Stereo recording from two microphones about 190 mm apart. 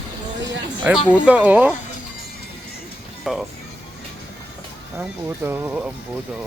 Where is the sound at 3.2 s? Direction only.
Centre (ahead or behind).